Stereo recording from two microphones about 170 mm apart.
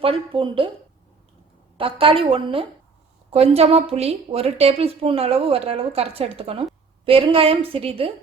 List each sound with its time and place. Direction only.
0.0 s a woman's voice: 35° right (ahead or behind)
1.8 s a woman's voice: 30° right (ahead or behind)